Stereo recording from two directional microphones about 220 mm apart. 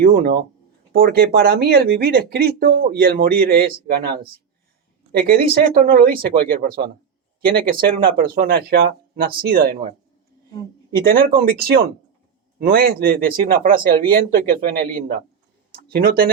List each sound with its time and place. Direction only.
0.0 s speech: 40° right (ahead or behind)
10.9 s speech: 40° right (ahead or behind)